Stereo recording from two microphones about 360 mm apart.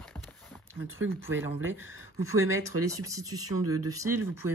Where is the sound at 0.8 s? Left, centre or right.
Right.